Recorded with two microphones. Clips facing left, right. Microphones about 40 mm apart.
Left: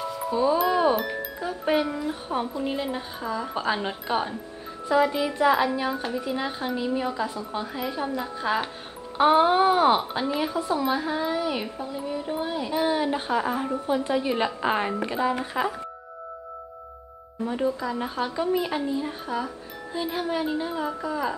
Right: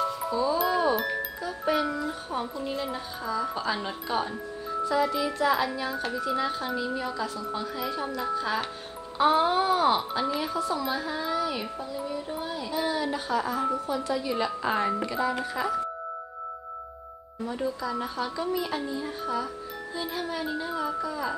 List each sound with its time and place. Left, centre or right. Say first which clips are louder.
0.3 s speech: left 6 dB; left
0.7 s music: left 3 dB; left
0.9 s speech: left 1 dB; centre
1.4 s a child's voice: left 3 dB; left
17.5 s speech: left 4 dB; left